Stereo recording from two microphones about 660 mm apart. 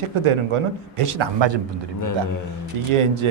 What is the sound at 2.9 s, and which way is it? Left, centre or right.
Speech, right.